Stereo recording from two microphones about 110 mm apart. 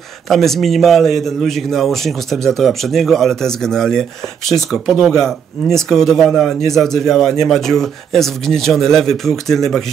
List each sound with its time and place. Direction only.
0.3 s a man's voice: centre (ahead or behind)